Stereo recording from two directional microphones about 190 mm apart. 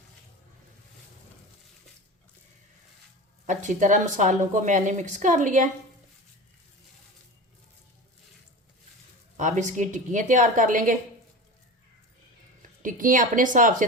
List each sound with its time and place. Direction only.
3.4 s a woman's voice: 40° right (ahead or behind)
9.4 s a woman's voice: 40° right (ahead or behind)
12.8 s speech: 45° right (ahead or behind)